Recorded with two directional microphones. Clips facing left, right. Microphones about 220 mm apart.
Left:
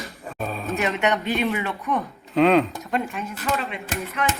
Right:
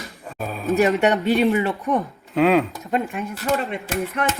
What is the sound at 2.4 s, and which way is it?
Speech, centre (ahead or behind).